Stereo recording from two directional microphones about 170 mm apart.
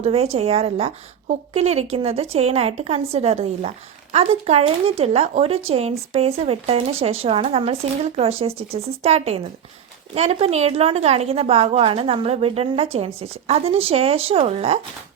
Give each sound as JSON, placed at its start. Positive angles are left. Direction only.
{"t": 0.0, "sound": "a woman's voice", "side_deg": -35}